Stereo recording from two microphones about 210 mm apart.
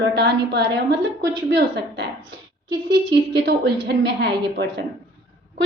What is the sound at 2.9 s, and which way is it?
A woman's voice, 55° right (ahead or behind).